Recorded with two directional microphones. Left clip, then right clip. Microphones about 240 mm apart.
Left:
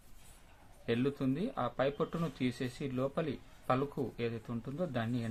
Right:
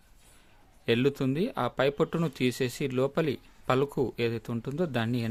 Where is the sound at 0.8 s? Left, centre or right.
Right.